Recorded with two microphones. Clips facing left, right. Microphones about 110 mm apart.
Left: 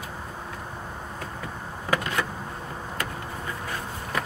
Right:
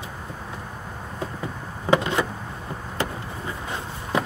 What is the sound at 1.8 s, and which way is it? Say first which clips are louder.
Vehicle: right 6 dB; 25° right (ahead or behind).